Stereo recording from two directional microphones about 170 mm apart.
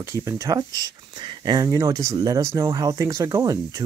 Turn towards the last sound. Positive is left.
turn(degrees=-20)  # may be behind; listen again after turning